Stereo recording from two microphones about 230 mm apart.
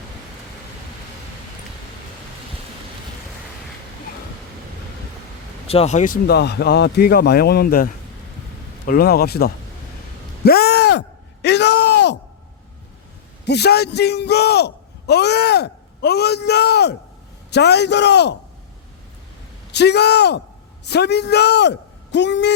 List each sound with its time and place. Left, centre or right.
5.6 s a man's voice: left
8.9 s a man's voice: left
10.4 s a sound: left
11.4 s speech: left
13.4 s a man's voice: left
19.7 s a man's voice: left